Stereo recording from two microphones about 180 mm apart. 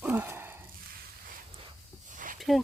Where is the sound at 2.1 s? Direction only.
45° right (ahead or behind).